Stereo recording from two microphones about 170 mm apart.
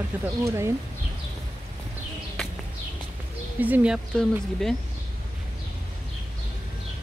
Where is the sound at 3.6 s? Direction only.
10° right (ahead or behind).